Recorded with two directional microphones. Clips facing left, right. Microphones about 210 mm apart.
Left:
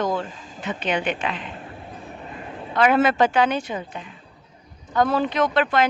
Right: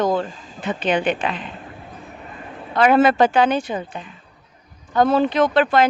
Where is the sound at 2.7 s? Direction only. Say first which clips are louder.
Right 3 dB; 35° right (ahead or behind).